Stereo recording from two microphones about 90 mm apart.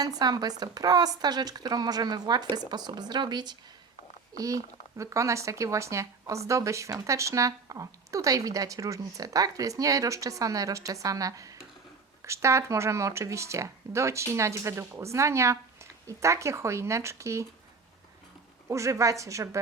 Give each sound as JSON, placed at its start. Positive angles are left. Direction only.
{"t": 0.0, "sound": "speech", "side_deg": -45}
{"t": 4.4, "sound": "speech", "side_deg": -40}
{"t": 18.7, "sound": "speech", "side_deg": -35}